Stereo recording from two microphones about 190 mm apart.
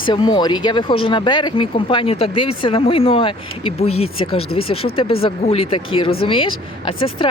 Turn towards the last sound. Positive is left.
turn(degrees=25)  # may be behind; listen again after turning